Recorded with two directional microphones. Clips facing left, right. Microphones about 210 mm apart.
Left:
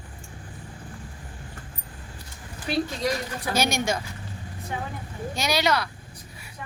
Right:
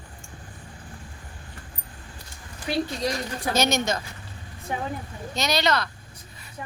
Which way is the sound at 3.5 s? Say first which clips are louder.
Right 1 dB; 10° left (ahead or behind).